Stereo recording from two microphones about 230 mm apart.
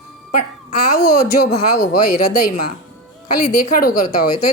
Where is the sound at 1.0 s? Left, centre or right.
Left.